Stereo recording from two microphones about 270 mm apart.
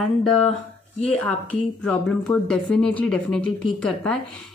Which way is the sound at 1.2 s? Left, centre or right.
Centre.